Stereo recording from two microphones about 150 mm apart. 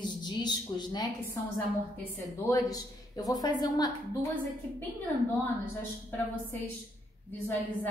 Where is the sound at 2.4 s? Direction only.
25° left (ahead or behind).